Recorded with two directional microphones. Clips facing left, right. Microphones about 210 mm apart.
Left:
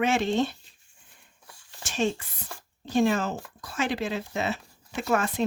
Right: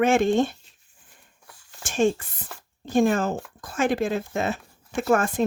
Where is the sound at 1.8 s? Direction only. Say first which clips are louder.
Right 5 dB; 50° right (ahead or behind).